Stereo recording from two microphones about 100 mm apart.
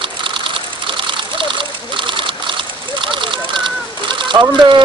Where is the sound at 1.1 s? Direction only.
55° right (ahead or behind).